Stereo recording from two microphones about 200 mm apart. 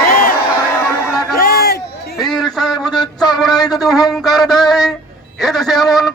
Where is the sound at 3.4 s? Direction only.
Centre (ahead or behind).